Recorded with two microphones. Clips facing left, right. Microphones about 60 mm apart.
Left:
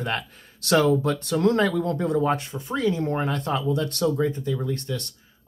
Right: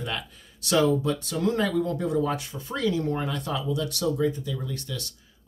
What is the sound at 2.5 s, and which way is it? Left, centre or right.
Speech, left.